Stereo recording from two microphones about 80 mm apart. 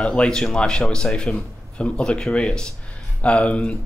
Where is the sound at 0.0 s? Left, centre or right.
Centre.